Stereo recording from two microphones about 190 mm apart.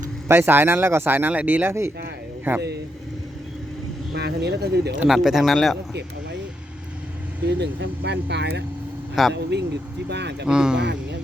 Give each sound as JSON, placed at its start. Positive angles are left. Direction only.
{"t": 0.3, "sound": "speech", "side_deg": -10}
{"t": 4.1, "sound": "speech", "side_deg": -60}
{"t": 4.9, "sound": "speech", "side_deg": 0}
{"t": 7.4, "sound": "speech", "side_deg": -65}
{"t": 10.4, "sound": "speech", "side_deg": -5}